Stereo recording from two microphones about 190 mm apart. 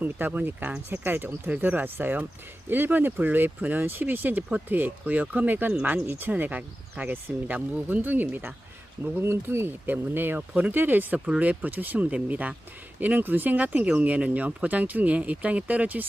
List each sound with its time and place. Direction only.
0.0 s speech: 10° right (ahead or behind)